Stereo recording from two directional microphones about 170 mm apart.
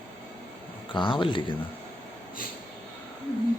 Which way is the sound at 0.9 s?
30° left (ahead or behind).